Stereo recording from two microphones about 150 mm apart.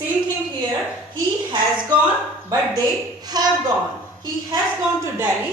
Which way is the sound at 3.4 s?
25° right (ahead or behind).